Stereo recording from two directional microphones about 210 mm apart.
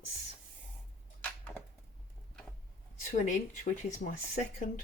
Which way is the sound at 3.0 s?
35° left (ahead or behind).